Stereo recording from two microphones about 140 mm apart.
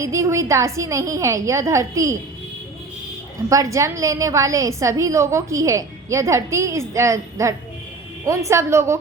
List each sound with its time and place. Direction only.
0.0 s a woman's voice: 20° right (ahead or behind)
3.5 s a woman's voice: 25° right (ahead or behind)